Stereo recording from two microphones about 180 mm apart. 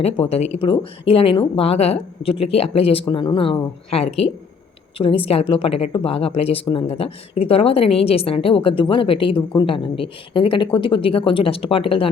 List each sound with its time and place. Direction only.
0.0 s speech: 35° left (ahead or behind)